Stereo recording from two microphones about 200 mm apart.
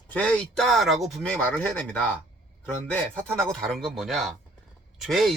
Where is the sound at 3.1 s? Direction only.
5° left (ahead or behind).